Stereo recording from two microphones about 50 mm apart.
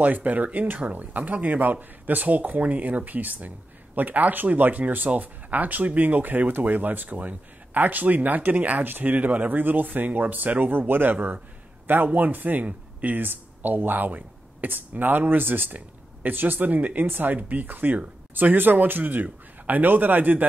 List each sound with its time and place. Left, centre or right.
0.0 s a man's voice: right